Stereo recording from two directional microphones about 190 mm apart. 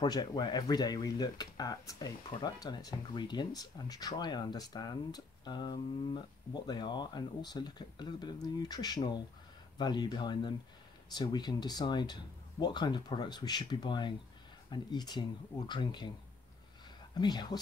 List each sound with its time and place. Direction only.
0.0 s speech: 20° left (ahead or behind)
17.1 s speech: 20° left (ahead or behind)